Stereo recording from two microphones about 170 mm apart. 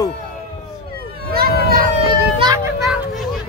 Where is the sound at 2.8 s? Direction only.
Centre (ahead or behind).